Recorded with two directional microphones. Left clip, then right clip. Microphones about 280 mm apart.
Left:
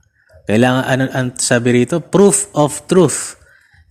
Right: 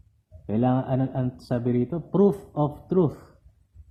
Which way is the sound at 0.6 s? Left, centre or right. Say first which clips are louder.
Left 10 dB; left.